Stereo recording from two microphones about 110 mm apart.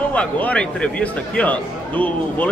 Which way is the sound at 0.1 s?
10° left (ahead or behind).